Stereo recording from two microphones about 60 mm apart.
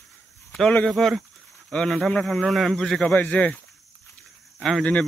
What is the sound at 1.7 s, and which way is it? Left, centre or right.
Speech, left.